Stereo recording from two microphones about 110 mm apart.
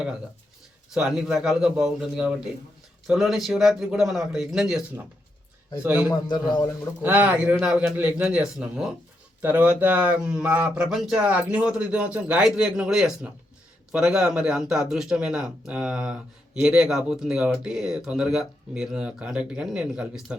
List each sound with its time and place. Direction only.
0.9 s a man's voice: 5° right (ahead or behind)
5.8 s speech: 10° right (ahead or behind)
6.1 s a man's voice: 40° left (ahead or behind)
7.0 s speech: 15° right (ahead or behind)